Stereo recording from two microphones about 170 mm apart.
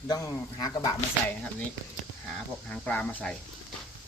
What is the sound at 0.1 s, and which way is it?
Speech, 25° left (ahead or behind).